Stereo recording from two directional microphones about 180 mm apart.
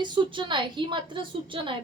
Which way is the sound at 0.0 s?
25° right (ahead or behind).